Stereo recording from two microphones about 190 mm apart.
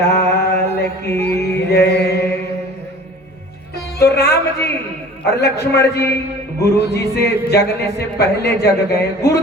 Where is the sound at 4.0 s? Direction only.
60° left (ahead or behind).